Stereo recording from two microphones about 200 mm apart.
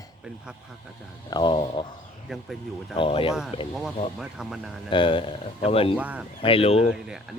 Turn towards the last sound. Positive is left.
turn(degrees=-5)  # may be behind; listen again after turning